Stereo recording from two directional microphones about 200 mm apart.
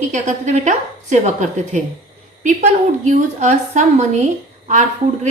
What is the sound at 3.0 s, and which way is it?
A woman's voice, 35° right (ahead or behind).